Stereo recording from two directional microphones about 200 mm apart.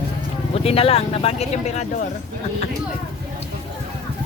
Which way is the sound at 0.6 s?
30° left (ahead or behind).